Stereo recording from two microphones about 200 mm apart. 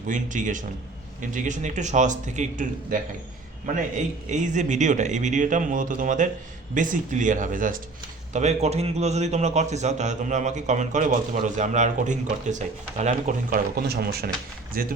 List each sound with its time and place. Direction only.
0.1 s a man's voice: 40° right (ahead or behind)